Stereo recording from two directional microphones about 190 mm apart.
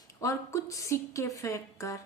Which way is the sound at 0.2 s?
15° left (ahead or behind).